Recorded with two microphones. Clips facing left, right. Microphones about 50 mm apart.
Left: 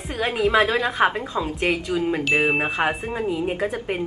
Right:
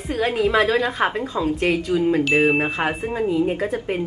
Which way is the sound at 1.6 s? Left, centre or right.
Left.